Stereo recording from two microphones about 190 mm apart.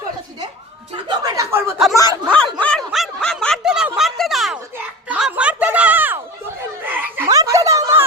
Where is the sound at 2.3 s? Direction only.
5° left (ahead or behind).